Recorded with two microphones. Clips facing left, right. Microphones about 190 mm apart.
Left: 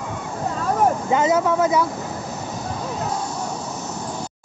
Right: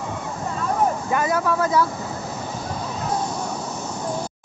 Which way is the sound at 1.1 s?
20° left (ahead or behind).